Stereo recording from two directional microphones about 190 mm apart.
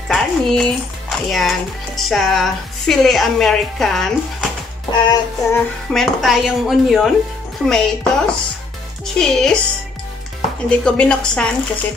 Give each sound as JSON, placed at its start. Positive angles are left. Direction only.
{"t": 0.1, "sound": "speech", "side_deg": 0}
{"t": 5.0, "sound": "child singing", "side_deg": 20}
{"t": 5.9, "sound": "speech", "side_deg": 0}
{"t": 10.7, "sound": "speech", "side_deg": 5}